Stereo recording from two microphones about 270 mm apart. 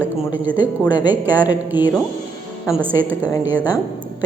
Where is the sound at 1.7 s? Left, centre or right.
Centre.